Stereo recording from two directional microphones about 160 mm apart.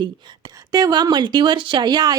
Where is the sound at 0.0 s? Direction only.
25° right (ahead or behind).